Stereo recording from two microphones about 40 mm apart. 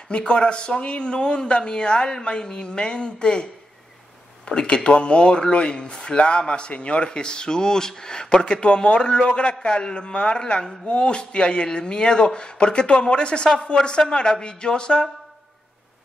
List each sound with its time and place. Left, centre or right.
0.1 s speech: left
4.5 s speech: left